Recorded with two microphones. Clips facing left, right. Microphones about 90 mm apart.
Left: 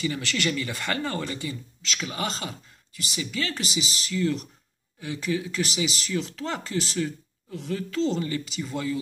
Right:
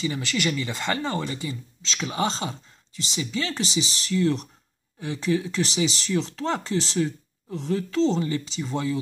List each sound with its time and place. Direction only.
0.0 s speech: 20° right (ahead or behind)